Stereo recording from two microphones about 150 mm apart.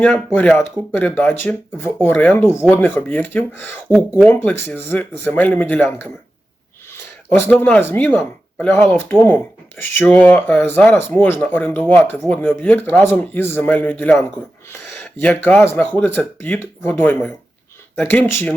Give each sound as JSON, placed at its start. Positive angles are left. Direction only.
{"t": 0.0, "sound": "speech", "side_deg": 10}
{"t": 7.3, "sound": "speech", "side_deg": 15}